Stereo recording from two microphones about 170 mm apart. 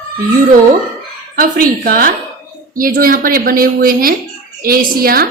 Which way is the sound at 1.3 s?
55° right (ahead or behind).